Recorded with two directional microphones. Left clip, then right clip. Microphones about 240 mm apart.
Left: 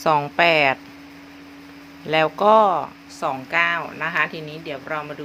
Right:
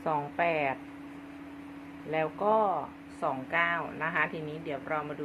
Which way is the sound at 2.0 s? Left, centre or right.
Left.